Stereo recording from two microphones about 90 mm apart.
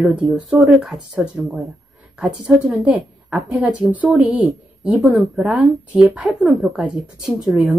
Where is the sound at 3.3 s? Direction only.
Centre (ahead or behind).